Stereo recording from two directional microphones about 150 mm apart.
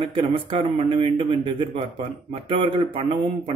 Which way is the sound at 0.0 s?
40° right (ahead or behind).